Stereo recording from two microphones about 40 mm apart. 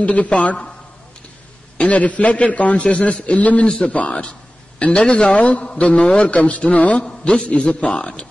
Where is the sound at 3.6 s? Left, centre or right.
Left.